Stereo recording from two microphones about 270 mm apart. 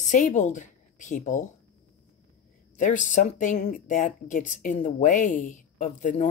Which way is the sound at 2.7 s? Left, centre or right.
Left.